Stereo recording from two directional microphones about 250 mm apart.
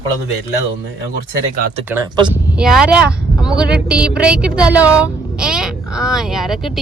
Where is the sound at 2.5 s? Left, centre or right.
Centre.